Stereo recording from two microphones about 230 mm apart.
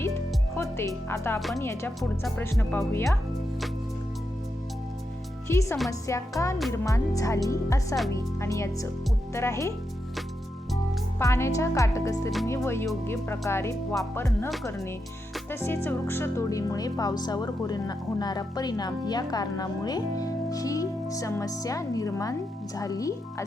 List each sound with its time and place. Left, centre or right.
0.5 s speech: centre
5.5 s speech: centre
11.2 s speech: centre
13.9 s music: centre
15.4 s speech: centre